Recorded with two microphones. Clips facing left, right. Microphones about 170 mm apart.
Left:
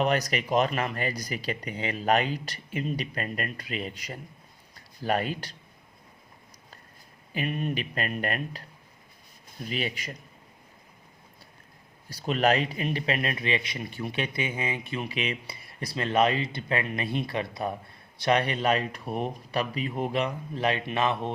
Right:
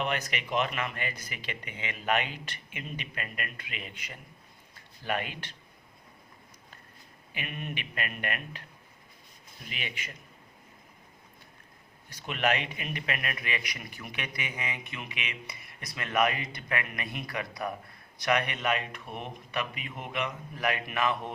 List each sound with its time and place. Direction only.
0.0 s a man's voice: 40° left (ahead or behind)
7.3 s speech: 35° left (ahead or behind)
9.6 s speech: 35° left (ahead or behind)
12.0 s a man's voice: 35° left (ahead or behind)